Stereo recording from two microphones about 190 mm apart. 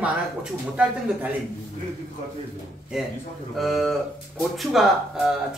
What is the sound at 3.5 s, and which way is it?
Speech, centre (ahead or behind).